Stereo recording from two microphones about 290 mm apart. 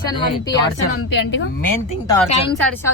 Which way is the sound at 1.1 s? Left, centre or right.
Left.